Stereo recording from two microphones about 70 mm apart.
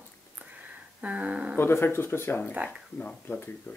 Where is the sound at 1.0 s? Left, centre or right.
Right.